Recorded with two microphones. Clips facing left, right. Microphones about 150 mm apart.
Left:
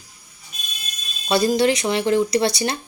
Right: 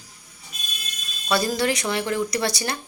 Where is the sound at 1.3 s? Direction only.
25° left (ahead or behind).